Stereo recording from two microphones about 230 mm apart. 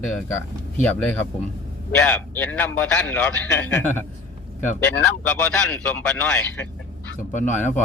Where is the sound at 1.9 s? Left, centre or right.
Centre.